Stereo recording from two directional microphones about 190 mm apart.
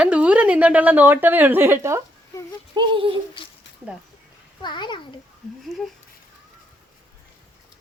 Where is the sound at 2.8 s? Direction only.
30° right (ahead or behind).